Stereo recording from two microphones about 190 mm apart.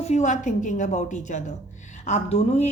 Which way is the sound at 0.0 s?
35° left (ahead or behind).